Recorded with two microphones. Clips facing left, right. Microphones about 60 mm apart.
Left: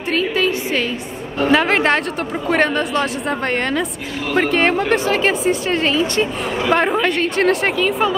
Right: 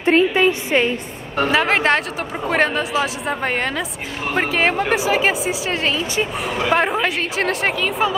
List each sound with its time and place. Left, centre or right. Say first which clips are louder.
0.0 s a woman's voice: right 4 dB; right
1.5 s a woman's voice: left 2 dB; centre